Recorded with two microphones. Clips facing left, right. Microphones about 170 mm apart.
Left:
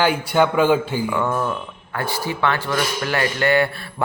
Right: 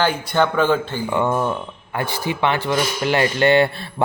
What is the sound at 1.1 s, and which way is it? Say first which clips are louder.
Speech: right 5 dB; 20° right (ahead or behind).